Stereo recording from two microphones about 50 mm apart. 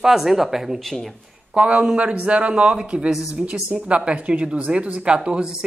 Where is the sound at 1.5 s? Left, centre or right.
Right.